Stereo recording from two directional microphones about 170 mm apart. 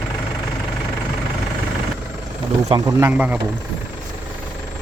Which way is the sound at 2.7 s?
20° right (ahead or behind).